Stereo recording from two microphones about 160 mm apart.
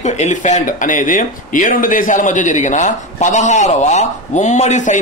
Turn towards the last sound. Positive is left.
turn(degrees=50)  # may be behind; listen again after turning